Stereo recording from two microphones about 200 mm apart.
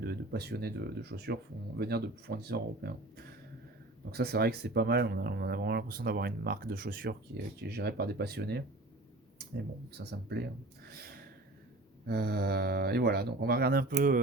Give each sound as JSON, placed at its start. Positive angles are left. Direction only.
{"t": 0.0, "sound": "speech", "side_deg": -50}
{"t": 9.9, "sound": "speech", "side_deg": -55}
{"t": 10.8, "sound": "a sound", "side_deg": -50}
{"t": 12.0, "sound": "speech", "side_deg": -50}